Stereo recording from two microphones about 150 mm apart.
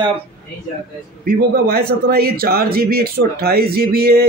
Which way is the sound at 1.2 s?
85° right.